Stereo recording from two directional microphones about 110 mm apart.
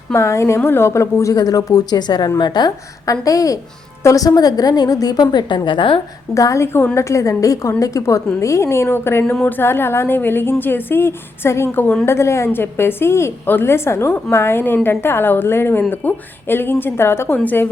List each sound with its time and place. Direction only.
0.1 s a woman's voice: 25° left (ahead or behind); by 6.0 s 45° left (ahead or behind)
6.3 s a woman's voice: 30° left (ahead or behind)
9.3 s a sound: 5° left (ahead or behind)
9.6 s a woman's voice: 20° left (ahead or behind)